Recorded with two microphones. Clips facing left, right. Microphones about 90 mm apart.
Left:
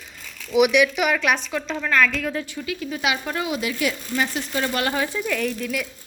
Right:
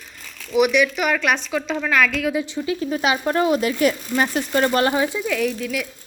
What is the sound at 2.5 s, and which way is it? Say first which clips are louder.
Speech: right 6 dB; 30° right (ahead or behind).